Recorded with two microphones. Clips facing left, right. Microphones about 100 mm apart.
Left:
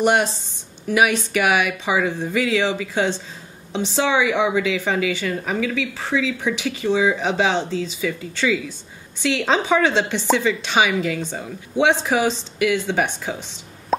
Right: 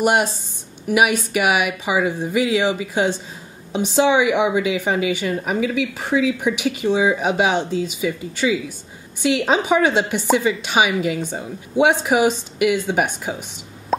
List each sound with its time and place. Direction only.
0.0 s a woman's voice: 10° right (ahead or behind)